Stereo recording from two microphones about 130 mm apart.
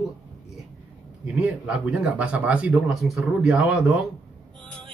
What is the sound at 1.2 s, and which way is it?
Speech, 10° right (ahead or behind).